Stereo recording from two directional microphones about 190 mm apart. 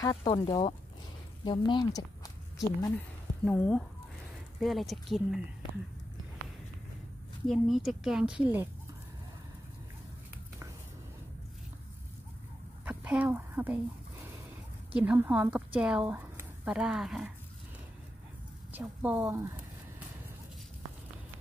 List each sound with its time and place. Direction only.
0.2 s speech: 25° left (ahead or behind)
3.4 s a woman's voice: 10° left (ahead or behind)
7.4 s a woman's voice: centre (ahead or behind)
12.8 s a sound: 5° right (ahead or behind)
15.0 s a woman's voice: 10° right (ahead or behind)
18.7 s speech: 10° right (ahead or behind)